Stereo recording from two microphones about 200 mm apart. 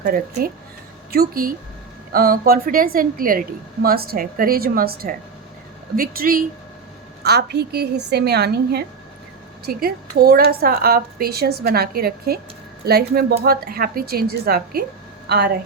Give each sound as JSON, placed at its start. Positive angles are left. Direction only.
{"t": 0.0, "sound": "a woman's voice", "side_deg": -45}